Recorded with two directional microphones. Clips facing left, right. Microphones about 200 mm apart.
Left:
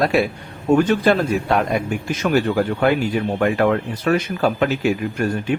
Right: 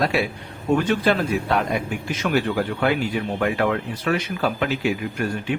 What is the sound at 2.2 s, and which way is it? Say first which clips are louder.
Speech: left 4 dB; 45° left (ahead or behind).